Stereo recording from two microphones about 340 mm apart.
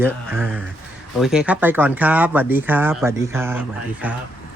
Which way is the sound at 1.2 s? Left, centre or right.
Centre.